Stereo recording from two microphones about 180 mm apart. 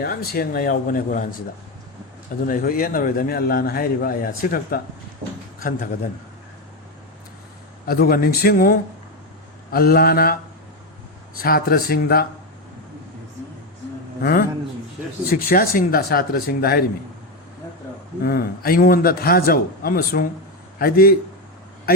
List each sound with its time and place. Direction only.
0.0 s a man's voice: 55° left (ahead or behind)
2.5 s a man's voice: 50° left (ahead or behind)
7.9 s a man's voice: 55° left (ahead or behind)
11.3 s a man's voice: 55° left (ahead or behind)
14.2 s a sound: 55° left (ahead or behind)
15.3 s a man's voice: 55° left (ahead or behind)
18.2 s a man's voice: 60° left (ahead or behind)